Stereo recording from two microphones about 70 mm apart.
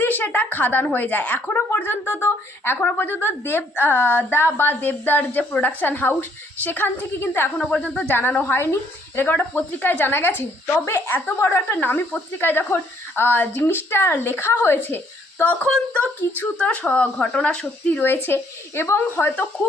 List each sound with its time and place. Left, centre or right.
0.0 s a woman's voice: left
7.6 s speech: centre
7.9 s a woman's voice: left
8.5 s speech: left
9.2 s speech: left
18.0 s speech: left